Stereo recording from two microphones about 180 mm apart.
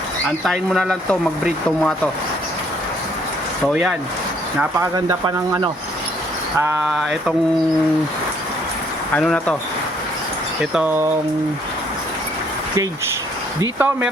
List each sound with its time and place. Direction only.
0.4 s speech: centre (ahead or behind)
4.8 s speech: 20° right (ahead or behind)
6.8 s speech: centre (ahead or behind)
9.1 s speech: 5° left (ahead or behind)
10.8 s speech: 10° right (ahead or behind)
13.6 s speech: 10° right (ahead or behind)